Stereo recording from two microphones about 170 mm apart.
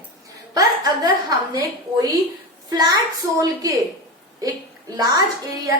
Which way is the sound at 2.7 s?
25° right (ahead or behind).